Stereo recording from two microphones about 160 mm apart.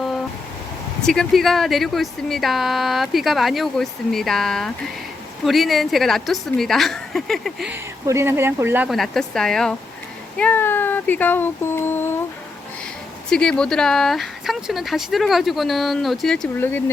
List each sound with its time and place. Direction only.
1.0 s speech: 5° left (ahead or behind)
7.7 s speech: 15° right (ahead or behind)
8.9 s speech: centre (ahead or behind)
13.3 s speech: 5° left (ahead or behind)